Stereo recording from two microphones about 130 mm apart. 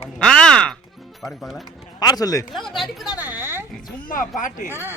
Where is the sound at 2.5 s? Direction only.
Centre (ahead or behind).